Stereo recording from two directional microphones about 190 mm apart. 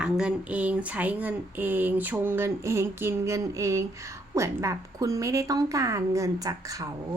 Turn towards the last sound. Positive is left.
turn(degrees=-20)  # may be behind; listen again after turning